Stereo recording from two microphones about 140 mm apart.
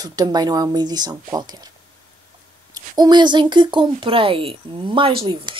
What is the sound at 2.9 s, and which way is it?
Speech, 30° right (ahead or behind).